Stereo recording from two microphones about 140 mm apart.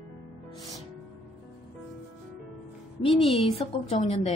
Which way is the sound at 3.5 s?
50° left (ahead or behind).